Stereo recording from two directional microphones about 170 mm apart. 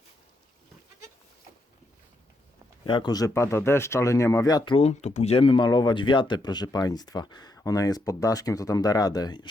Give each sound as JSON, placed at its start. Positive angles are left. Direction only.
{"t": 2.8, "sound": "speech", "side_deg": 30}